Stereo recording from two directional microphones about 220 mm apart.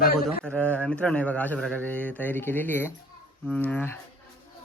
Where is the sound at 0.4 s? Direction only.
5° left (ahead or behind).